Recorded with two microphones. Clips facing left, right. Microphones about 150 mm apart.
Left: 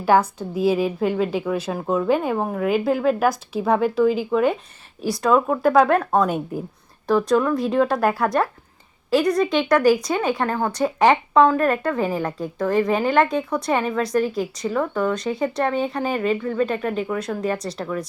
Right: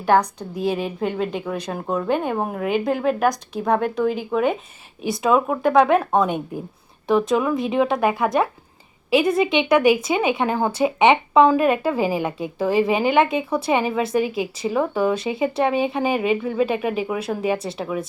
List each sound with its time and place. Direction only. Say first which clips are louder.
0.0 s a woman's voice: even; 5° left (ahead or behind)